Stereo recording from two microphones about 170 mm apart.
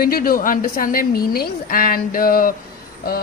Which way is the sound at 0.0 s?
60° left (ahead or behind).